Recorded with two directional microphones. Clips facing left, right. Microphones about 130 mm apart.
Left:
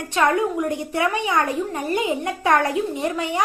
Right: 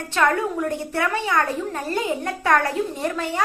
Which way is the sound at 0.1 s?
15° left (ahead or behind).